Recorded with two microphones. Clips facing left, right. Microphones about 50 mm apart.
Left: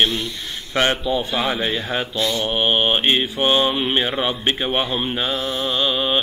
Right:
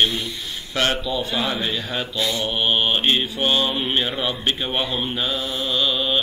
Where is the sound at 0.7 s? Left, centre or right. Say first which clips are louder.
Left 3 dB; left.